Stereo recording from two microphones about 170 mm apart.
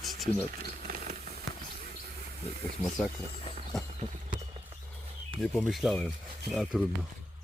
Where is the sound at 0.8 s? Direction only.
50° right (ahead or behind).